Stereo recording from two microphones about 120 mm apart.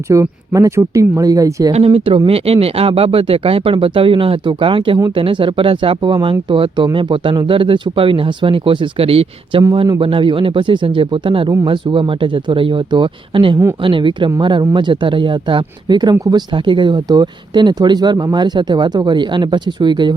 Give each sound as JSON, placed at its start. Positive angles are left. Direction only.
{"t": 0.1, "sound": "speech", "side_deg": -25}
{"t": 1.7, "sound": "speech", "side_deg": -50}